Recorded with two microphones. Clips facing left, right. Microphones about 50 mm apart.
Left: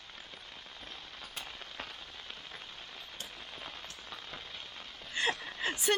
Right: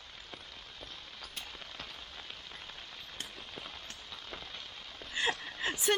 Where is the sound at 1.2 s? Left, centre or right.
Left.